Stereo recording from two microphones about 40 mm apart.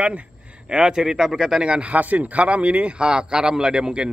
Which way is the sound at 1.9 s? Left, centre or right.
Right.